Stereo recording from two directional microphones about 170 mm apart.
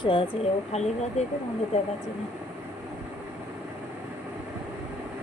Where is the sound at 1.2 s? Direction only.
40° left (ahead or behind).